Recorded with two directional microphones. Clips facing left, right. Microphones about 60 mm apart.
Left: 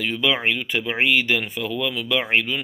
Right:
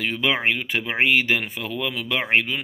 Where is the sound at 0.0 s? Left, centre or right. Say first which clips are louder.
Even; right.